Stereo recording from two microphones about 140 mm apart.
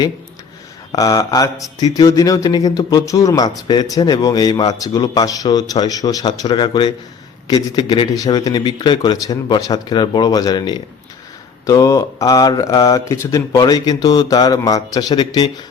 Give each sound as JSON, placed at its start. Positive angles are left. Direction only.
{"t": 0.9, "sound": "speech", "side_deg": 25}